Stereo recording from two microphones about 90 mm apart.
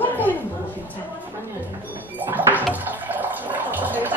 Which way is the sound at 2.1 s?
20° right (ahead or behind).